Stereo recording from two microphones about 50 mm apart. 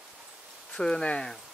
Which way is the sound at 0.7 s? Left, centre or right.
Centre.